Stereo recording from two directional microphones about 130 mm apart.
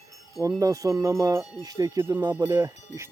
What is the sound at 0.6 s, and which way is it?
Speech, 25° right (ahead or behind).